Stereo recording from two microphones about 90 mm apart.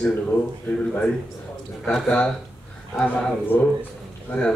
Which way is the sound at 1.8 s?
5° left (ahead or behind).